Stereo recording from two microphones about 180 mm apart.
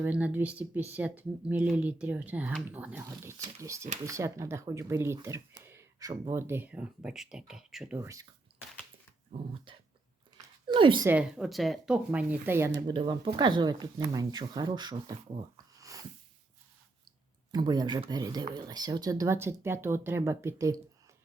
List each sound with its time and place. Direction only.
0.0 s speech: 10° right (ahead or behind)
7.9 s speech: 15° right (ahead or behind)
9.7 s speech: 30° right (ahead or behind)
10.3 s a sound: 25° right (ahead or behind)
11.0 s speech: 10° right (ahead or behind)
12.8 s speech: 25° right (ahead or behind)
15.5 s a sound: 20° right (ahead or behind)
17.5 s speech: 25° right (ahead or behind)